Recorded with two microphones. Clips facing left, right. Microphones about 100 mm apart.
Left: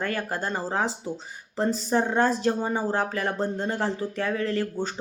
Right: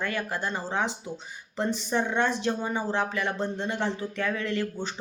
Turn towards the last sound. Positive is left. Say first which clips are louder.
# left 3 dB
turn(degrees=40)  # may be behind; listen again after turning